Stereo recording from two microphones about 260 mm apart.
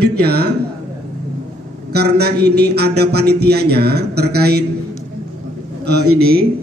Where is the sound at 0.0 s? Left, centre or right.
Right.